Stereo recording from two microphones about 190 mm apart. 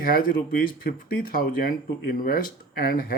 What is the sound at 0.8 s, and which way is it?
Speech, 50° left (ahead or behind).